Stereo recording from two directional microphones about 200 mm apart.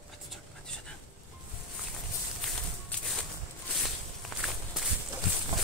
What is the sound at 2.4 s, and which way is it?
Music, centre (ahead or behind).